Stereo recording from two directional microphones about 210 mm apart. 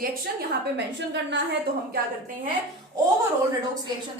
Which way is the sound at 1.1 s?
60° right (ahead or behind).